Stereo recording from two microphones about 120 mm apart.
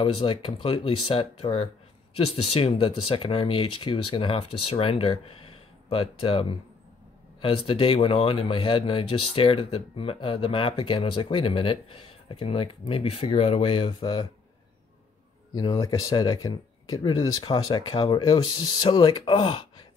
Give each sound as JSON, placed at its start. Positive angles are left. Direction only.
{"t": 0.0, "sound": "speech", "side_deg": 50}
{"t": 7.4, "sound": "speech", "side_deg": 50}
{"t": 15.5, "sound": "speech", "side_deg": 30}